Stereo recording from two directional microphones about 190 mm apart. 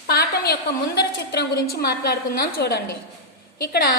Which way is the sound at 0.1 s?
55° left (ahead or behind).